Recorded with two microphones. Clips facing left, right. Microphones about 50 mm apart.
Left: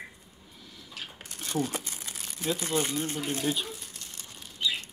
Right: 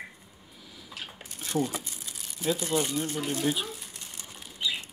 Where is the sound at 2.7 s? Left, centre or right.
Left.